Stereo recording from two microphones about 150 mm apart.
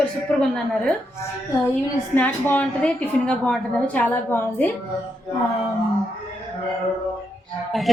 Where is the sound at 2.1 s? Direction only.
10° left (ahead or behind).